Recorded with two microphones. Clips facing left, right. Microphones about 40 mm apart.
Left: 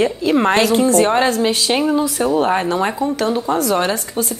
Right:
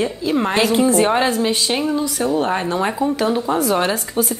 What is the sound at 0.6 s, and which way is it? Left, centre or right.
Speech, centre.